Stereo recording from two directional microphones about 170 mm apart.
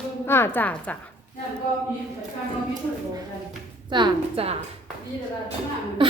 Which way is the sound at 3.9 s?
30° right (ahead or behind).